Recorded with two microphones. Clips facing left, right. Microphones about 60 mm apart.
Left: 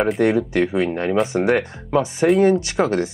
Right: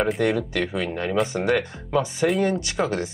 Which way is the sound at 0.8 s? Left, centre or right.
Left.